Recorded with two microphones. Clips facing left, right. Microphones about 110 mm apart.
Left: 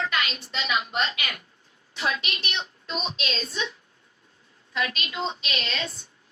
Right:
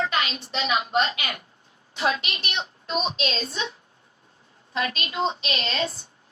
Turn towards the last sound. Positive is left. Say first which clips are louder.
# right 4 dB
turn(degrees=-35)  # may be behind; listen again after turning